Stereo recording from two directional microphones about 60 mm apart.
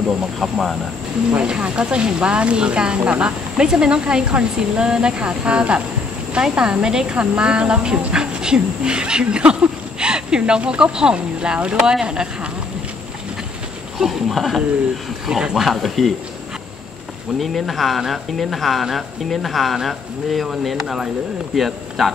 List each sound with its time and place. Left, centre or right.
0.4 s speech: centre
1.4 s speech: centre
13.9 s speech: centre
17.4 s speech: centre